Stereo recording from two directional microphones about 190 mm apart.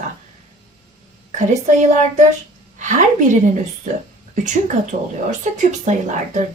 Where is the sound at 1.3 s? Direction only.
35° right (ahead or behind).